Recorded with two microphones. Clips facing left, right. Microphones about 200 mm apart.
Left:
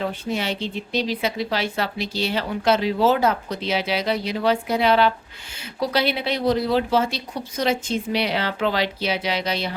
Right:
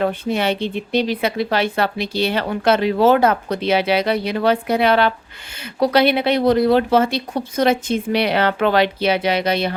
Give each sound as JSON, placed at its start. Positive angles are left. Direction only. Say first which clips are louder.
{"t": 0.0, "sound": "speech", "louder": "right 6 dB", "side_deg": -60}